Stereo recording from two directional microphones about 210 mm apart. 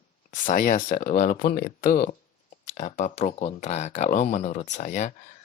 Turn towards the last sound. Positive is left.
turn(degrees=35)  # may be behind; listen again after turning